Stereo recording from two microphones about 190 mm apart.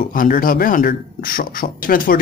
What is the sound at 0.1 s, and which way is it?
Speech, 45° left (ahead or behind).